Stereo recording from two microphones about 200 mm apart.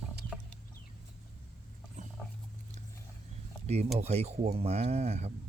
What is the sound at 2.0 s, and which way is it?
Dog, 35° right (ahead or behind).